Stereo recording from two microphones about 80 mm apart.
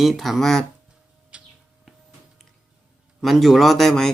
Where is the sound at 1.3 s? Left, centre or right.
Centre.